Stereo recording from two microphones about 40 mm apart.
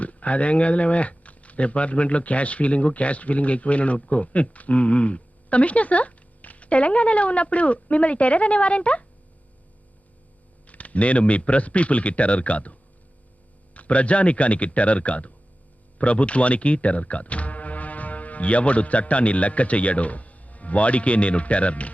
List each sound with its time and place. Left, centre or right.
0.0 s speech: left
10.7 s speech: left
13.7 s speech: left